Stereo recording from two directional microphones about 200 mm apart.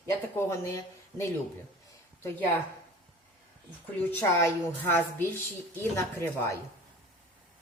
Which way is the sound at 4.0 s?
10° left (ahead or behind).